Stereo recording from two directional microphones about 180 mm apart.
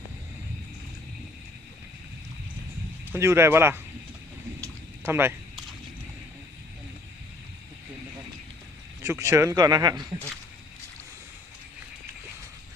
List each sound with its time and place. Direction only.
3.1 s speech: 15° right (ahead or behind)
4.6 s a sound: 10° right (ahead or behind)
9.0 s a man's voice: 15° right (ahead or behind)